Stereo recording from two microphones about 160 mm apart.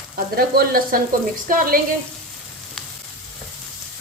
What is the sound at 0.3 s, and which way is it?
Sizzle, 70° right (ahead or behind).